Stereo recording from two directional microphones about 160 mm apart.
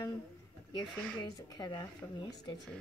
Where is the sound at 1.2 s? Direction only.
25° left (ahead or behind).